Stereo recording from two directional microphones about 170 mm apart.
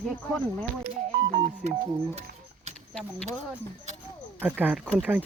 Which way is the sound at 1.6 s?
40° right (ahead or behind).